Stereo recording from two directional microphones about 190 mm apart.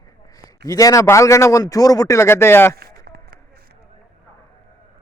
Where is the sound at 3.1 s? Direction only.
55° right (ahead or behind).